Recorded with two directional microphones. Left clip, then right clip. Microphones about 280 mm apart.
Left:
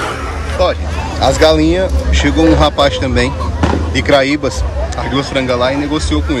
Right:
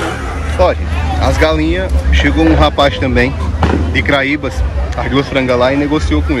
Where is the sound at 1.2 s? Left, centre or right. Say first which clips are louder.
Left 4 dB; centre.